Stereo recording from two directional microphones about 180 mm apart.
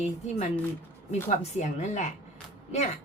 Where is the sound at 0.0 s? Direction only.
40° left (ahead or behind).